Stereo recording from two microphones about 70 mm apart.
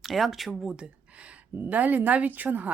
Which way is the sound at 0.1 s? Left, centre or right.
Centre.